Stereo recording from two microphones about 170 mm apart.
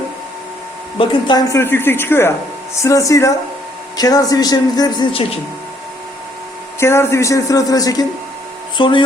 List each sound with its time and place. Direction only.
0.9 s speech: 25° left (ahead or behind)
6.7 s speech: 15° left (ahead or behind)